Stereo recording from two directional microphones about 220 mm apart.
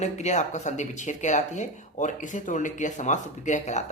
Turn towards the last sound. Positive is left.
turn(degrees=30)  # may be behind; listen again after turning